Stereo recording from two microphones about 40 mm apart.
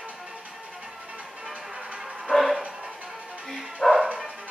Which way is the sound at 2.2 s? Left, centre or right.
Centre.